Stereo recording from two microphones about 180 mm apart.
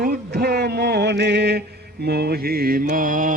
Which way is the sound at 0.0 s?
65° right (ahead or behind).